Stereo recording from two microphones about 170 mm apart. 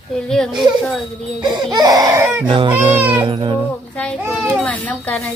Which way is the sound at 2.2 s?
10° right (ahead or behind).